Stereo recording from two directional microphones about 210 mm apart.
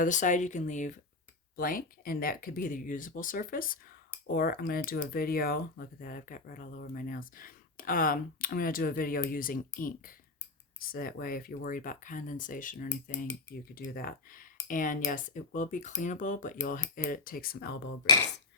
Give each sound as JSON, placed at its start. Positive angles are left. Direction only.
{"t": 0.0, "sound": "speech", "side_deg": 35}